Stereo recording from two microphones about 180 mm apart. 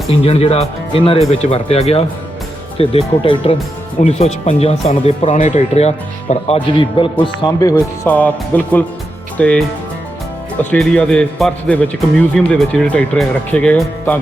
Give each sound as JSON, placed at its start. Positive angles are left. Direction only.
{"t": 0.1, "sound": "speech", "side_deg": 35}
{"t": 8.0, "sound": "a man's voice", "side_deg": 10}